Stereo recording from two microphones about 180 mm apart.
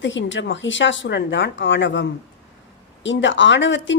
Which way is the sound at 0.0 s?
90° left.